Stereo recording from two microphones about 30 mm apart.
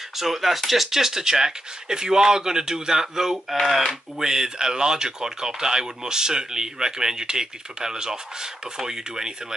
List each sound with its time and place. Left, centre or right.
0.2 s speech: centre
0.8 s speech: centre
4.2 s speech: right